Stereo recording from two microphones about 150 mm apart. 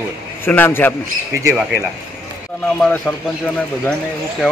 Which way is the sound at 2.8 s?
10° left (ahead or behind).